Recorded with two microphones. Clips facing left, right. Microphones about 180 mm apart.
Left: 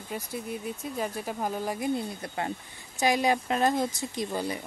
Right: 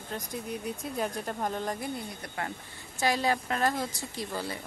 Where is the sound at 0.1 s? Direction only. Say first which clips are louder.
Left 1 dB; 5° left (ahead or behind).